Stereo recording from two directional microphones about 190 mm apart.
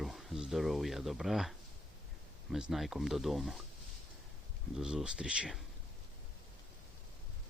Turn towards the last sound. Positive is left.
turn(degrees=-5)  # may be behind; listen again after turning